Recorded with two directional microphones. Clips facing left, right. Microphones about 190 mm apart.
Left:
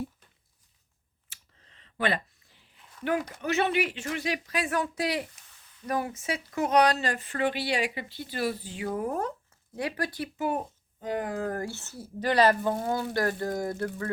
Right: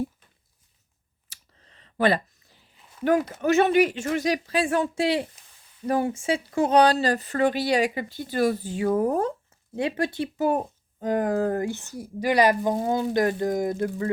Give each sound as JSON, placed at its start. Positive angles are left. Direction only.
{"t": 1.3, "sound": "clicking", "side_deg": -40}
{"t": 3.0, "sound": "speech", "side_deg": -40}
{"t": 4.4, "sound": "speech", "side_deg": -30}
{"t": 9.7, "sound": "speech", "side_deg": -25}
{"t": 10.3, "sound": "speech", "side_deg": -40}
{"t": 11.4, "sound": "speech", "side_deg": -20}